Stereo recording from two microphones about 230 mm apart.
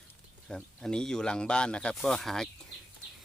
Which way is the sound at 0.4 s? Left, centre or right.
Centre.